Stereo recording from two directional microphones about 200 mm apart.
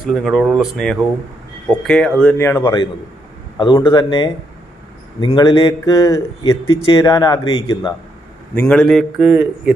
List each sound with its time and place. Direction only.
0.0 s speech: centre (ahead or behind)
2.6 s a man's voice: 25° left (ahead or behind)
8.5 s speech: 5° left (ahead or behind)